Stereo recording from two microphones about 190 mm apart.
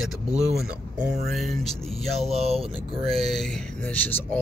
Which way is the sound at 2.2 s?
35° right (ahead or behind).